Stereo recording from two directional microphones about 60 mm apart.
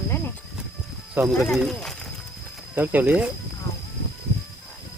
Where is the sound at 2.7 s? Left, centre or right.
Right.